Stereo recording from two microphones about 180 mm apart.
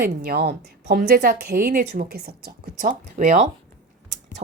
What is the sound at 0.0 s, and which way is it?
Speech, 55° right (ahead or behind).